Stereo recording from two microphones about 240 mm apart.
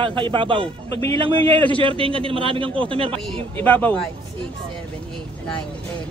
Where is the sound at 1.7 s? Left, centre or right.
Right.